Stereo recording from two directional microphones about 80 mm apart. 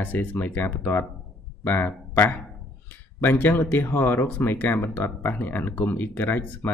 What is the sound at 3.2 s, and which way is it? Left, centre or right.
Speech, left.